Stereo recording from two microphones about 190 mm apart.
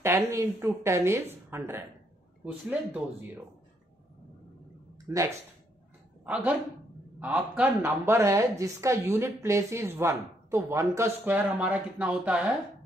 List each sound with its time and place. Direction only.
0.0 s a woman's voice: 15° right (ahead or behind)
4.9 s a sound: 20° right (ahead or behind)
6.2 s a woman's voice: 5° right (ahead or behind)